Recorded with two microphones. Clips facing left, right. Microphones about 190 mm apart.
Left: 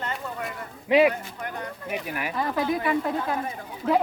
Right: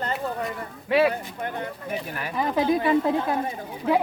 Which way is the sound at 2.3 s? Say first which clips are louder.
Right 4 dB; 20° right (ahead or behind).